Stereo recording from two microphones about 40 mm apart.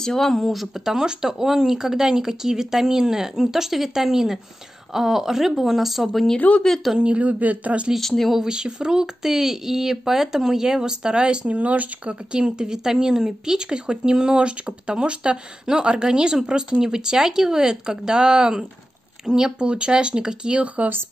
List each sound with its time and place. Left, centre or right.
0.0 s speech: centre
0.8 s speech: centre
6.4 s speech: left
6.8 s speech: centre
7.2 s speech: right
8.0 s speech: centre
8.5 s speech: centre
11.4 s speech: right
12.3 s a woman's voice: right